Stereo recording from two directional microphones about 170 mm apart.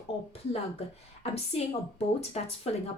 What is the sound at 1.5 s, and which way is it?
Speech, 35° left (ahead or behind).